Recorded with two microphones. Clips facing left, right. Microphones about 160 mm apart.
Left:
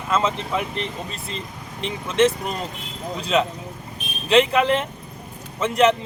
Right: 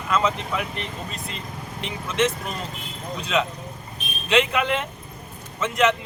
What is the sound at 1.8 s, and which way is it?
Speech, 30° left (ahead or behind).